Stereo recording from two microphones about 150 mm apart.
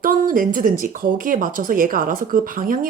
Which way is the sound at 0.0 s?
65° right (ahead or behind).